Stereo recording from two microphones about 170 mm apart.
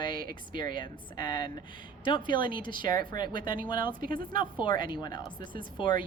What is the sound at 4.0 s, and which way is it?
Speech, 55° right (ahead or behind).